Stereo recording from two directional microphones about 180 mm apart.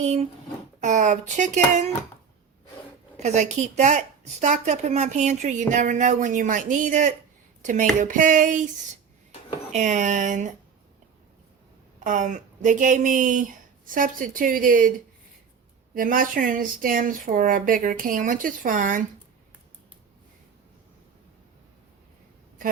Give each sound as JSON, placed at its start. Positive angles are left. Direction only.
{"t": 0.0, "sound": "a woman's voice", "side_deg": -35}
{"t": 3.2, "sound": "a woman's voice", "side_deg": -40}
{"t": 9.7, "sound": "a woman's voice", "side_deg": -40}
{"t": 11.9, "sound": "a woman's voice", "side_deg": -45}
{"t": 16.0, "sound": "a woman's voice", "side_deg": -50}